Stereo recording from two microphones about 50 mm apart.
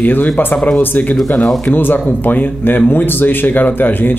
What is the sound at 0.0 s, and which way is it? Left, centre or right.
Speech, left.